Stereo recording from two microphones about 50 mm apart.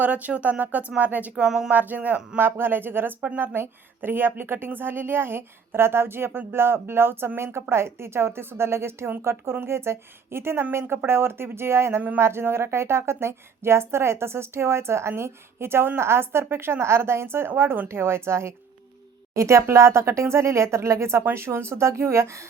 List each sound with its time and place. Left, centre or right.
0.0 s speech: right
1.5 s speech: centre
1.7 s speech: right
2.4 s a woman's voice: right
19.4 s speech: right